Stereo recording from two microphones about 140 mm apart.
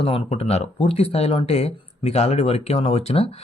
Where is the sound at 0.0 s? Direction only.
45° left (ahead or behind).